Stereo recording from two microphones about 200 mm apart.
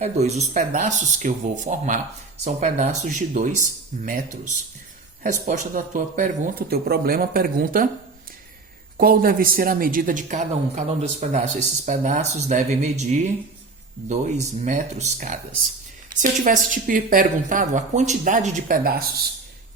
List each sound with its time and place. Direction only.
0.0 s speech: 35° right (ahead or behind)
9.0 s speech: 45° right (ahead or behind)